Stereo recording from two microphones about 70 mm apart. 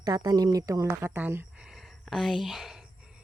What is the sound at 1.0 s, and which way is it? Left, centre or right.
Speech, right.